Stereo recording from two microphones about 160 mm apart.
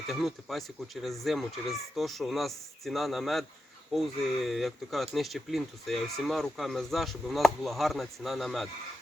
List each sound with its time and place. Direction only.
0.1 s speech: centre (ahead or behind)